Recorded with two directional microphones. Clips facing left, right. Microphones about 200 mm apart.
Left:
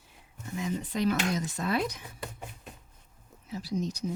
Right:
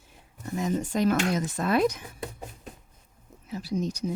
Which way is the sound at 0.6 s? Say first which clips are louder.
Right 5 dB; 45° right (ahead or behind).